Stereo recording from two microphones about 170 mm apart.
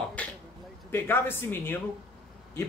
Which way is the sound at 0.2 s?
10° left (ahead or behind).